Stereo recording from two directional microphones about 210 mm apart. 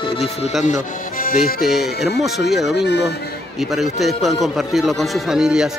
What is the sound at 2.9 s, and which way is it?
Speech, 55° left (ahead or behind).